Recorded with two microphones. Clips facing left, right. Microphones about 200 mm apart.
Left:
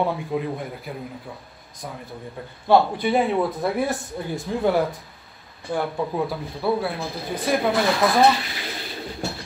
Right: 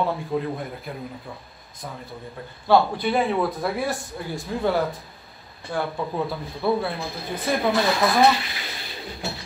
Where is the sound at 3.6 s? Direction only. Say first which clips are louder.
Left 2 dB; 20° left (ahead or behind).